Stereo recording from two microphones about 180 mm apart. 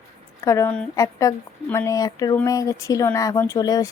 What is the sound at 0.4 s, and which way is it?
Speech, 15° left (ahead or behind).